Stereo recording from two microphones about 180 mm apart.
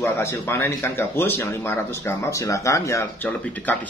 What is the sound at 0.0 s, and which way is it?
Speech, 15° left (ahead or behind).